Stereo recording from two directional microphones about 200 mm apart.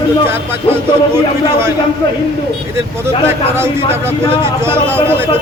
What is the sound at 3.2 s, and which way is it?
A man's voice, 10° right (ahead or behind).